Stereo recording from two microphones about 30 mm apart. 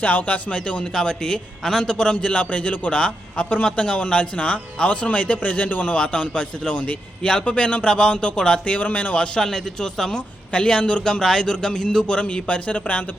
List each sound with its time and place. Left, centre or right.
0.0 s speech: left
0.3 s a man's voice: left
2.2 s speech: left
2.9 s a man's voice: left
4.1 s speech: left
6.0 s a man's voice: left
7.2 s speech: left
7.4 s a man's voice: left
8.8 s speech: left
9.1 s a man's voice: left
9.4 s speech: centre
10.5 s a man's voice: left
11.0 s a man's voice: left